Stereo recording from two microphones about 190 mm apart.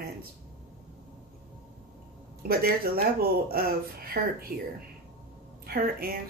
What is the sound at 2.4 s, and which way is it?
Speech, 55° right (ahead or behind).